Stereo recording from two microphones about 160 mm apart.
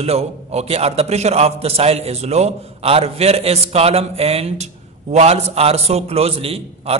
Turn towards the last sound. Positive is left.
turn(degrees=-40)  # may be behind; listen again after turning